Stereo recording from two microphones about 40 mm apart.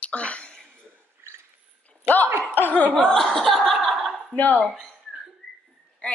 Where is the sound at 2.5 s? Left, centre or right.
Left.